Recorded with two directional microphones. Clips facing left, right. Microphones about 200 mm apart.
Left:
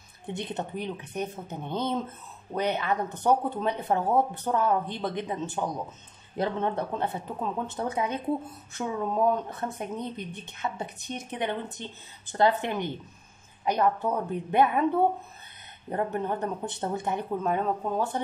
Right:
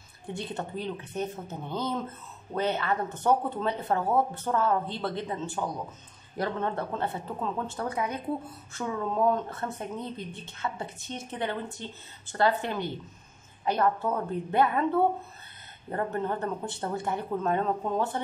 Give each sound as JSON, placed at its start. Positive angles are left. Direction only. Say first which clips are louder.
{"t": 0.3, "sound": "speech", "louder": "left 1 dB", "side_deg": 20}
{"t": 15.9, "sound": "speech", "louder": "left 1 dB", "side_deg": 15}
{"t": 17.4, "sound": "speech", "louder": "even", "side_deg": 10}